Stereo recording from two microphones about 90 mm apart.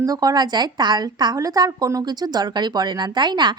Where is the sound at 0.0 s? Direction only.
45° right (ahead or behind).